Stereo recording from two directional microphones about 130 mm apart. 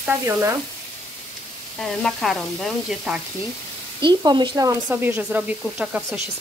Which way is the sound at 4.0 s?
35° right (ahead or behind).